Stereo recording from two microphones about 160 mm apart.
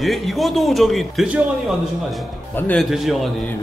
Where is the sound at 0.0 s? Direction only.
Centre (ahead or behind).